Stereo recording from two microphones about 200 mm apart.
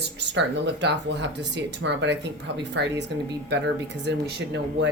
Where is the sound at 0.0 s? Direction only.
60° right (ahead or behind).